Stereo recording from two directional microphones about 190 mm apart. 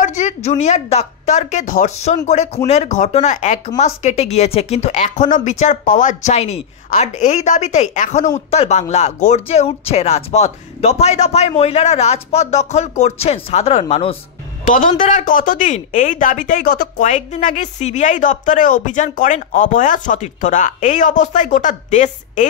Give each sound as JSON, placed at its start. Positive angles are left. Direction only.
{"t": 0.0, "sound": "a woman's voice", "side_deg": 40}
{"t": 14.6, "sound": "a woman's voice", "side_deg": 45}